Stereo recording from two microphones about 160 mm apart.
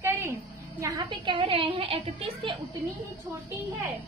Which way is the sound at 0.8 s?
30° right (ahead or behind).